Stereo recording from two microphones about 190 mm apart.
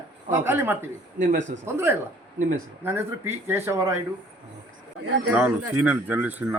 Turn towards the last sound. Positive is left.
turn(degrees=-10)  # may be behind; listen again after turning